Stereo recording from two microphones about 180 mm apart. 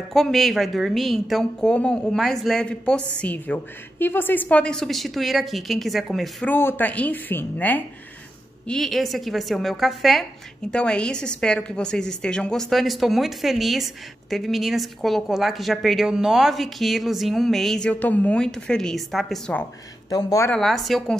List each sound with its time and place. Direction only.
0.1 s a woman's voice: centre (ahead or behind)
6.5 s a woman's voice: 10° left (ahead or behind)
20.1 s speech: 20° left (ahead or behind)
20.5 s a woman's voice: centre (ahead or behind)